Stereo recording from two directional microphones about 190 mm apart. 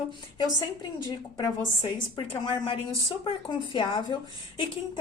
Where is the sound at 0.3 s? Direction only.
20° left (ahead or behind).